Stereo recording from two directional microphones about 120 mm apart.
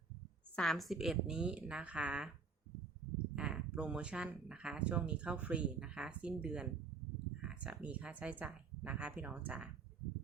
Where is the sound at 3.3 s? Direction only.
10° right (ahead or behind).